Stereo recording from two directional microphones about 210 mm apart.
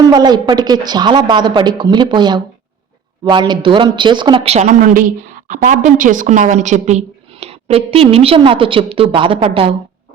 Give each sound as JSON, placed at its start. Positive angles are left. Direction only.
{"t": 0.0, "sound": "a woman's voice", "side_deg": -20}